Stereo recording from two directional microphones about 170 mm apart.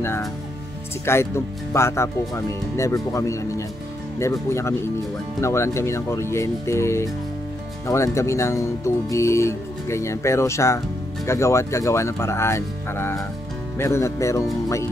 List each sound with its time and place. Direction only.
1.0 s speech: 15° left (ahead or behind)